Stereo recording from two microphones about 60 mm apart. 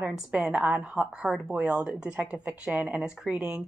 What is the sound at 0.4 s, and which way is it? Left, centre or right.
Speech, centre.